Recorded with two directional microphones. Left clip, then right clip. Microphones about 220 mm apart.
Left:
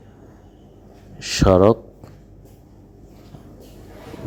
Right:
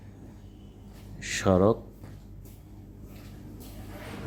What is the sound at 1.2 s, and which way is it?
Speech, 25° left (ahead or behind).